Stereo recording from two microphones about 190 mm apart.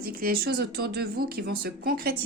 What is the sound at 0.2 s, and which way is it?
A woman's voice, 55° right (ahead or behind).